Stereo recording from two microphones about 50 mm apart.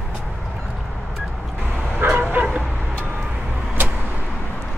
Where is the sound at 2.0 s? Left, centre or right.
Right.